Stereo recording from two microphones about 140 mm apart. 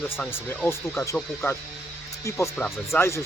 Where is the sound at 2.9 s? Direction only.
20° left (ahead or behind).